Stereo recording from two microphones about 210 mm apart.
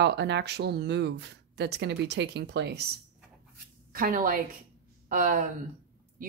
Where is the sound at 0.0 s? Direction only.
55° right (ahead or behind).